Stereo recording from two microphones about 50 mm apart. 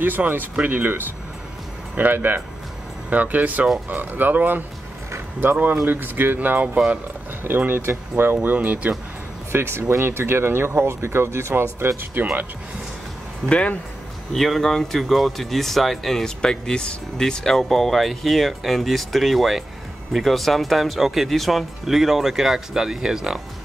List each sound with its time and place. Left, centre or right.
0.0 s speech: right
8.8 s speech: right
9.5 s speech: right
12.2 s speech: right
13.5 s speech: left
14.3 s speech: centre
16.3 s speech: centre